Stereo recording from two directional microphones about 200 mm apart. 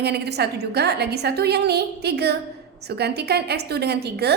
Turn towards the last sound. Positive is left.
turn(degrees=-55)  # may be behind; listen again after turning